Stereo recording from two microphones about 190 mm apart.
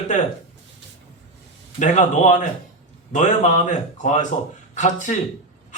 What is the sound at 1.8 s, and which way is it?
A man's voice, 40° left (ahead or behind).